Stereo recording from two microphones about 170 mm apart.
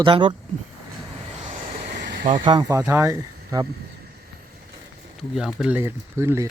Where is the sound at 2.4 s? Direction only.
25° right (ahead or behind).